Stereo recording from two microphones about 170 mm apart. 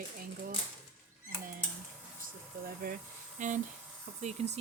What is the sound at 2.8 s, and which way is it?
Speech, 60° right (ahead or behind).